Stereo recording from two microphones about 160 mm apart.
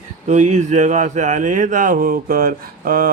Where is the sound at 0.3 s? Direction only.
45° right (ahead or behind).